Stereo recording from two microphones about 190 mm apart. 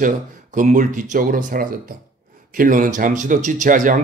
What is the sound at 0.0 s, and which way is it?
Speech, 40° right (ahead or behind).